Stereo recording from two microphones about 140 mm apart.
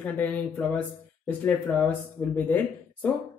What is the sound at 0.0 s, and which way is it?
Speech, 10° left (ahead or behind).